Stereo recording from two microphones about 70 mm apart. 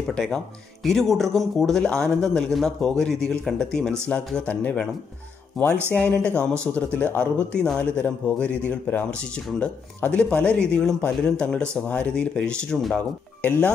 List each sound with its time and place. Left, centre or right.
0.8 s speech: centre
4.5 s speech: left
5.5 s speech: centre
5.9 s speech: centre
13.4 s speech: left